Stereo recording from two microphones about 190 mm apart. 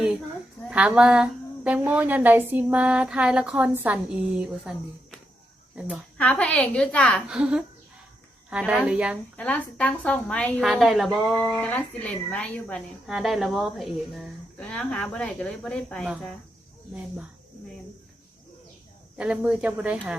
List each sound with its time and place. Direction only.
0.7 s a woman's voice: 5° right (ahead or behind)
5.7 s a woman's voice: 5° right (ahead or behind)
6.1 s a woman's voice: 5° left (ahead or behind)
7.3 s speech: 5° right (ahead or behind)
9.4 s a woman's voice: 5° left (ahead or behind)
19.1 s speech: 5° right (ahead or behind)